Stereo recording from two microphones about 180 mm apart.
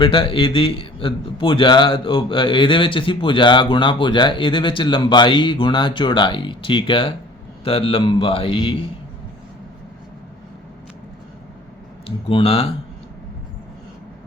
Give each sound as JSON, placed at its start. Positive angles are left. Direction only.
{"t": 0.0, "sound": "a man's voice", "side_deg": 30}
{"t": 12.0, "sound": "speech", "side_deg": 30}